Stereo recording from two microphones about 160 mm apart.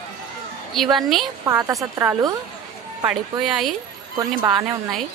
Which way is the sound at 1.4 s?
20° right (ahead or behind).